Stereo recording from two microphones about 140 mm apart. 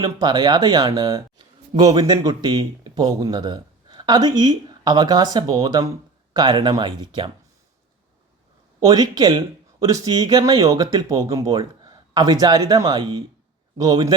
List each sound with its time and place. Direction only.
0.0 s speech: 30° right (ahead or behind)
8.9 s speech: 30° right (ahead or behind)